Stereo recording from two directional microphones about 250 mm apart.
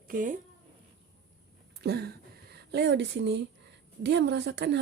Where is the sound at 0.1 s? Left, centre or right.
Right.